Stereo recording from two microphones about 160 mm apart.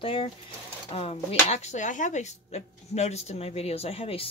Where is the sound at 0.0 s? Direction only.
35° left (ahead or behind).